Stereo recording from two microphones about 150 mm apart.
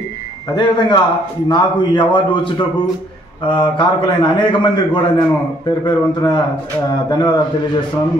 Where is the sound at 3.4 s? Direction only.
30° left (ahead or behind).